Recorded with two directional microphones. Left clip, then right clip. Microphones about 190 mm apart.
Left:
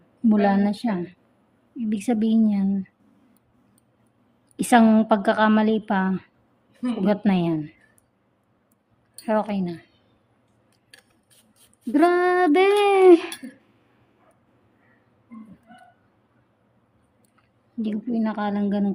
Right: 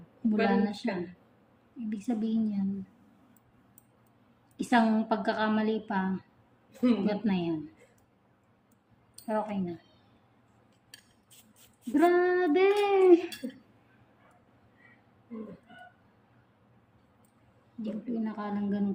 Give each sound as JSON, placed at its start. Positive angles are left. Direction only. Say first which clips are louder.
{"t": 0.3, "sound": "a woman's voice", "louder": "left 7 dB", "side_deg": 55}
{"t": 4.5, "sound": "a woman's voice", "louder": "left 9 dB", "side_deg": 55}
{"t": 9.2, "sound": "a woman's voice", "louder": "left 8 dB", "side_deg": 65}
{"t": 11.9, "sound": "child singing", "louder": "left 6 dB", "side_deg": 65}
{"t": 17.8, "sound": "a woman's voice", "louder": "left 9 dB", "side_deg": 60}